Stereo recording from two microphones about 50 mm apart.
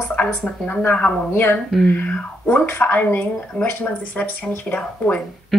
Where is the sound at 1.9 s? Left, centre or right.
Left.